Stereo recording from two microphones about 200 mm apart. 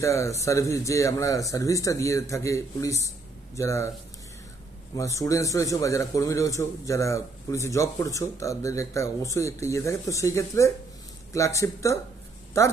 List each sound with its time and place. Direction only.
0.0 s a man's voice: 15° left (ahead or behind)
4.9 s a man's voice: 15° left (ahead or behind)